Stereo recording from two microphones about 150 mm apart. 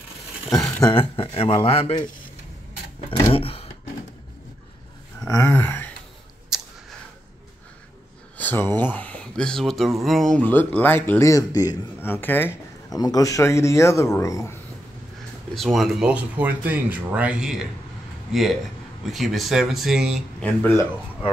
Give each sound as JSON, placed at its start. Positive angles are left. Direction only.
{"t": 0.8, "sound": "speech", "side_deg": 35}
{"t": 3.1, "sound": "speech", "side_deg": 40}
{"t": 5.3, "sound": "speech", "side_deg": 15}
{"t": 8.4, "sound": "a sound", "side_deg": 10}
{"t": 8.9, "sound": "speech", "side_deg": 10}
{"t": 12.9, "sound": "speech", "side_deg": 25}
{"t": 15.5, "sound": "speech", "side_deg": 0}
{"t": 20.4, "sound": "speech", "side_deg": 15}